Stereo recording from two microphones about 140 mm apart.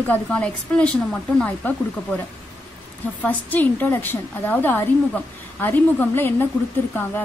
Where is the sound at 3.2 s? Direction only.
10° left (ahead or behind).